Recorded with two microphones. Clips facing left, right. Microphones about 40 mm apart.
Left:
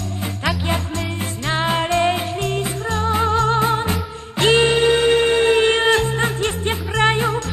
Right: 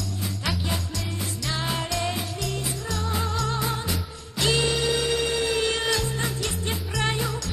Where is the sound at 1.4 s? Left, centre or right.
Left.